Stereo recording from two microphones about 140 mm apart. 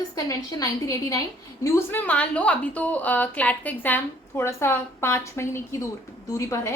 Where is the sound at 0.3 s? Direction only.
25° left (ahead or behind).